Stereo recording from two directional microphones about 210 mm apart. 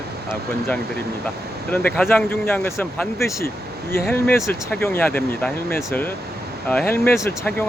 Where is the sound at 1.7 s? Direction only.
5° left (ahead or behind).